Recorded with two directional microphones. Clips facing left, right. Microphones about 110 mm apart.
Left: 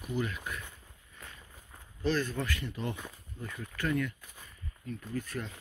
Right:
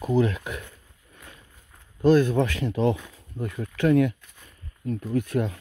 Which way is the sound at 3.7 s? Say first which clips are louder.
Right 12 dB; 70° right (ahead or behind).